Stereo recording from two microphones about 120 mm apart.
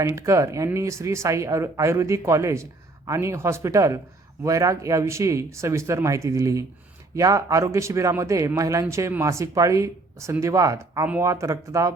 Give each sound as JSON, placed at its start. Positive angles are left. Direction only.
{"t": 0.0, "sound": "a man's voice", "side_deg": -25}